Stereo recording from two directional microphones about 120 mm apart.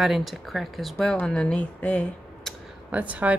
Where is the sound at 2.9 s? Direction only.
10° right (ahead or behind).